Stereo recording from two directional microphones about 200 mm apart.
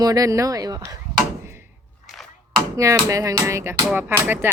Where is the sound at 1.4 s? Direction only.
15° right (ahead or behind).